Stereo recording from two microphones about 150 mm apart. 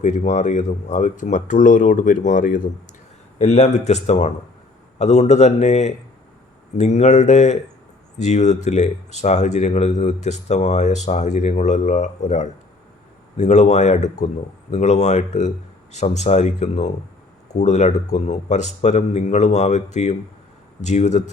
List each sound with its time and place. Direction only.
0.0 s speech: 50° left (ahead or behind)
3.3 s speech: 50° left (ahead or behind)